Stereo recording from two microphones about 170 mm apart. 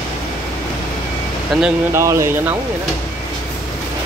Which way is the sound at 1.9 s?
15° right (ahead or behind).